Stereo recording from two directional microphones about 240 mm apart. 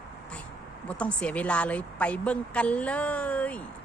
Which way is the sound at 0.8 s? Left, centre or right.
Centre.